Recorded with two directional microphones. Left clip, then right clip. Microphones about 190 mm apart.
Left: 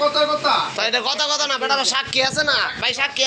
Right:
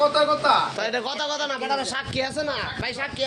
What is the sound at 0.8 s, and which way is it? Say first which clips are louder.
A man's voice: left 6 dB; 20° right (ahead or behind).